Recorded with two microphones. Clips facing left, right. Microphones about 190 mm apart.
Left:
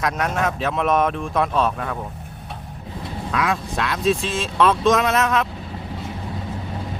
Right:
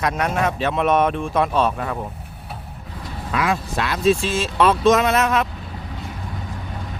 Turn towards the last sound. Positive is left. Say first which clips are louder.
# right 1 dB
turn(degrees=0)  # may be behind; listen again after turning